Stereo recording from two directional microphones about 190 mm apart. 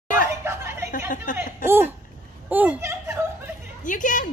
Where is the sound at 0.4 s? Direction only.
15° right (ahead or behind).